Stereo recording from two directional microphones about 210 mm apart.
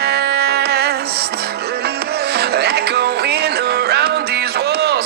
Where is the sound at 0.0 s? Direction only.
50° right (ahead or behind).